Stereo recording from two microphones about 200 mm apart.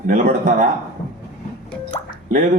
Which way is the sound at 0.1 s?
40° right (ahead or behind).